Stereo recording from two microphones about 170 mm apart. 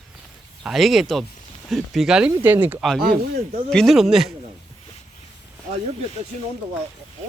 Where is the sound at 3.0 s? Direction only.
55° right (ahead or behind).